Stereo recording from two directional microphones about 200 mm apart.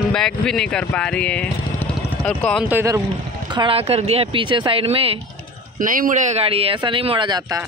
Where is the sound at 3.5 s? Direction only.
25° right (ahead or behind).